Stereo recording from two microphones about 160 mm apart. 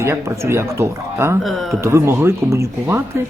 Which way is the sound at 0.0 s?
15° right (ahead or behind).